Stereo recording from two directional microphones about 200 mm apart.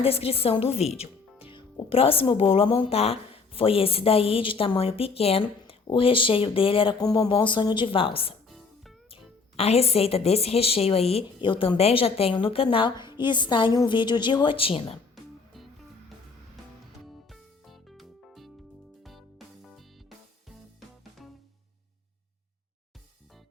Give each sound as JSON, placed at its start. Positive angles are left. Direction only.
{"t": 0.0, "sound": "speech", "side_deg": 30}
{"t": 8.4, "sound": "music", "side_deg": 0}
{"t": 9.6, "sound": "speech", "side_deg": 30}
{"t": 17.1, "sound": "music", "side_deg": 0}
{"t": 19.6, "sound": "music", "side_deg": 0}